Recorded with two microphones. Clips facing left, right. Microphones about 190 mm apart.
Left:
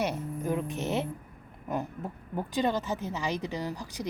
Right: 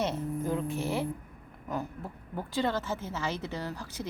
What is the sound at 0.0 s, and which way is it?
Speech, 15° left (ahead or behind).